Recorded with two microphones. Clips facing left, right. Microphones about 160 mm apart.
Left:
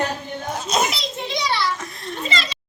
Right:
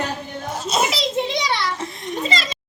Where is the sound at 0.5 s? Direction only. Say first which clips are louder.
Even; centre (ahead or behind).